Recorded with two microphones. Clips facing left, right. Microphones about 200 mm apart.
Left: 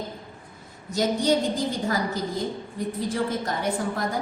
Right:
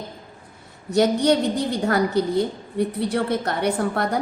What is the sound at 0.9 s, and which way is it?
A woman's voice, 65° right (ahead or behind).